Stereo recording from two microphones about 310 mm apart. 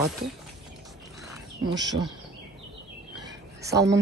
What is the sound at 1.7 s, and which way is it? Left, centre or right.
Speech, centre.